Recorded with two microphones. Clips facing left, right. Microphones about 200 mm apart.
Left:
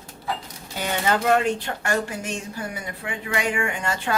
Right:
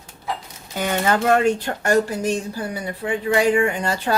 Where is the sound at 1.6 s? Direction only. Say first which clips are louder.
Right 7 dB; 40° right (ahead or behind).